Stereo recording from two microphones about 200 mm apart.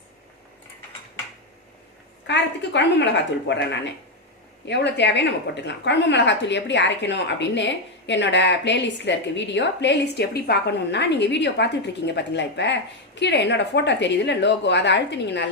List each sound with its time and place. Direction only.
2.2 s a woman's voice: 60° left (ahead or behind)